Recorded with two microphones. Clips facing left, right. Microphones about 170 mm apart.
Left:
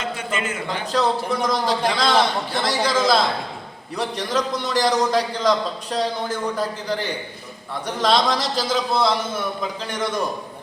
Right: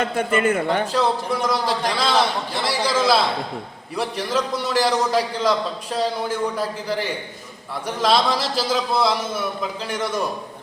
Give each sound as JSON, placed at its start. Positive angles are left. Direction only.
{"t": 0.0, "sound": "a man's voice", "side_deg": -55}
{"t": 0.9, "sound": "a man's voice", "side_deg": -10}